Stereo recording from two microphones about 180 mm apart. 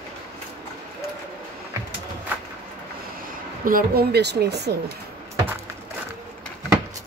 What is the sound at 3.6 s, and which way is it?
Speech, 55° right (ahead or behind).